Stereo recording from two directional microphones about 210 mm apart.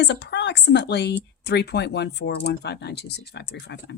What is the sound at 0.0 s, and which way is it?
Speech, 50° left (ahead or behind).